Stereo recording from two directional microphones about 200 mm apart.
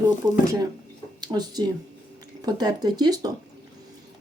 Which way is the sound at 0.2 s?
20° right (ahead or behind).